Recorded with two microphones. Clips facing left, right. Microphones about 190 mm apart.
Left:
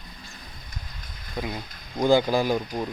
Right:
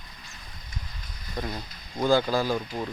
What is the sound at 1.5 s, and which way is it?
Speech, 15° left (ahead or behind).